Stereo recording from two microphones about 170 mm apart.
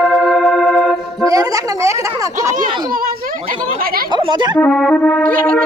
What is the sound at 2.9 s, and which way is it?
Speech, 55° right (ahead or behind).